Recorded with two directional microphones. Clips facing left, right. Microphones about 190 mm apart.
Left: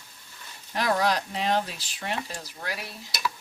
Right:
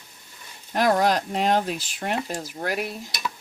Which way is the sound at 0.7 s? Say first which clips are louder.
Right 5 dB; 50° right (ahead or behind).